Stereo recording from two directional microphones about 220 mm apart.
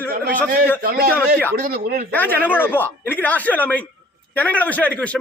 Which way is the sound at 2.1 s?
10° left (ahead or behind).